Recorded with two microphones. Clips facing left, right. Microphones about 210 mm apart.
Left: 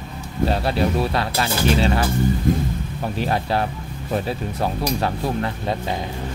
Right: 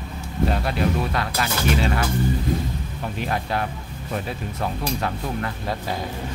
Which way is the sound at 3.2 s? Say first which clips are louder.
Left 4 dB; 30° left (ahead or behind).